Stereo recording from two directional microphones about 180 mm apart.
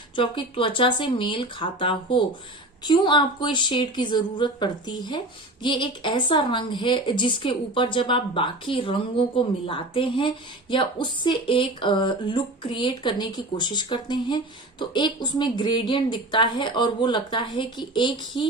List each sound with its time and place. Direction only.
0.2 s a woman's voice: 30° left (ahead or behind)